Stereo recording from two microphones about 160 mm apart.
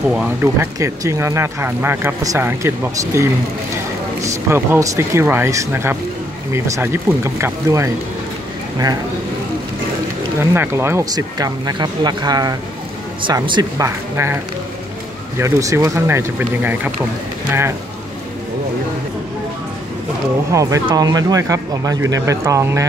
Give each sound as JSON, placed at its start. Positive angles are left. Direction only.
{"t": 0.1, "sound": "speech", "side_deg": -10}
{"t": 10.4, "sound": "speech", "side_deg": -15}
{"t": 20.5, "sound": "speech", "side_deg": -20}